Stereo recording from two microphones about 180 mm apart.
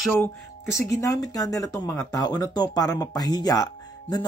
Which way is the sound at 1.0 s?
20° left (ahead or behind).